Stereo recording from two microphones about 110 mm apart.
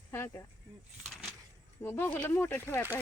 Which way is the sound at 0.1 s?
25° left (ahead or behind).